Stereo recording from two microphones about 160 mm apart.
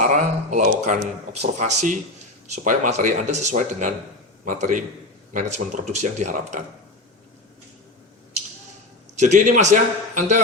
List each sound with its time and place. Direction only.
0.0 s a sound: 55° right (ahead or behind)
1.4 s speech: 45° right (ahead or behind)
9.1 s speech: 50° right (ahead or behind)